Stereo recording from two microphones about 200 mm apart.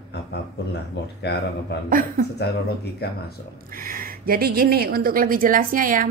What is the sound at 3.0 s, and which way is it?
Speech, 50° left (ahead or behind).